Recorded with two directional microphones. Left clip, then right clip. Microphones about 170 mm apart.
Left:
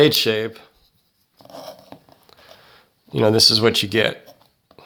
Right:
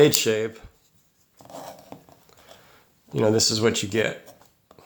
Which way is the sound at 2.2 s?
30° left (ahead or behind).